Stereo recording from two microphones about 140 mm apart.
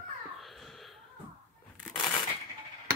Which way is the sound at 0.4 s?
Centre (ahead or behind).